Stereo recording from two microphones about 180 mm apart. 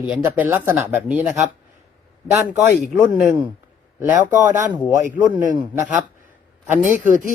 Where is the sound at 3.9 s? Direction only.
15° right (ahead or behind).